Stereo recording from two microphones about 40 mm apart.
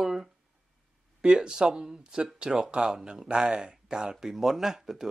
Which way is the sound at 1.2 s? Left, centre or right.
Right.